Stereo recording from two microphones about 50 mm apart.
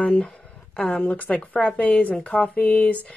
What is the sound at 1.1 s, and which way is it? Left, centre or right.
Speech, left.